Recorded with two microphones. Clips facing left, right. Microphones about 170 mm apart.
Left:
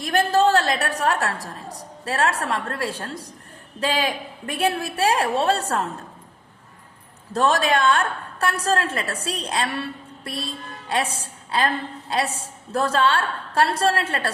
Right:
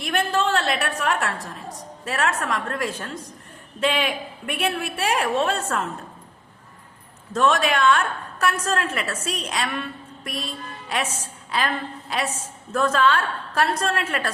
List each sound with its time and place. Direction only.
0.0 s a woman's voice: 35° left (ahead or behind)
7.3 s a woman's voice: 35° left (ahead or behind)